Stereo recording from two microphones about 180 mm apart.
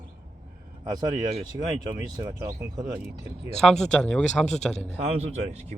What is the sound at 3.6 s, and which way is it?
Speech, centre (ahead or behind).